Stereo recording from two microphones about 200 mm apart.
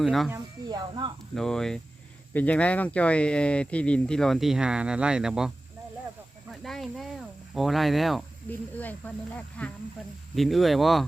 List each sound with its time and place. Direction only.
0.0 s speech: centre (ahead or behind)
0.3 s snake: 20° right (ahead or behind)
1.4 s speech: centre (ahead or behind)
6.5 s speech: centre (ahead or behind)